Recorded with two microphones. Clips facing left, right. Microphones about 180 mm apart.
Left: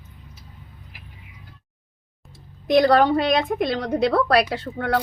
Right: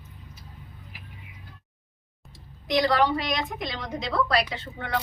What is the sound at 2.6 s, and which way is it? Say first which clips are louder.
Speech: left 7 dB; 55° left (ahead or behind).